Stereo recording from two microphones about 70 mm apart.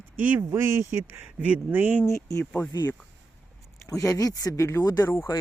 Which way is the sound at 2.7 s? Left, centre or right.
Left.